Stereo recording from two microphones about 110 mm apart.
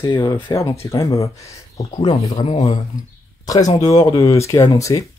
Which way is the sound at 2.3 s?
60° left (ahead or behind).